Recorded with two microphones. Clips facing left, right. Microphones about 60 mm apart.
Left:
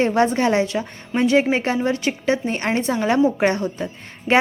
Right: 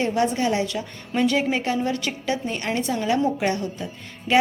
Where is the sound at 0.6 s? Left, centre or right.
Left.